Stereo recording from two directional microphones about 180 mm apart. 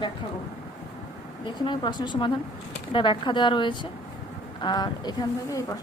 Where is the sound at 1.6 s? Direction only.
25° left (ahead or behind).